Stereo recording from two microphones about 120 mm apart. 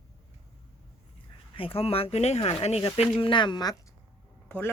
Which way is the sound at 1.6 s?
50° left (ahead or behind).